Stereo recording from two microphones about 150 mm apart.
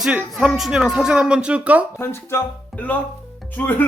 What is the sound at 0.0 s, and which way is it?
Speech, 5° right (ahead or behind).